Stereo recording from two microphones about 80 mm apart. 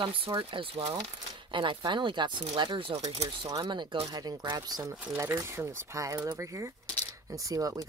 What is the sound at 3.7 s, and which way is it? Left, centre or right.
Speech, right.